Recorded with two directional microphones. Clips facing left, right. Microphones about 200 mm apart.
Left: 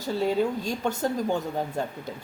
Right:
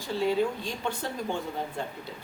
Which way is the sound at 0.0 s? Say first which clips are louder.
Left 2 dB; 45° left (ahead or behind).